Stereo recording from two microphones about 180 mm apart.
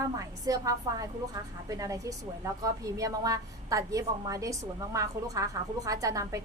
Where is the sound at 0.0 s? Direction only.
20° right (ahead or behind).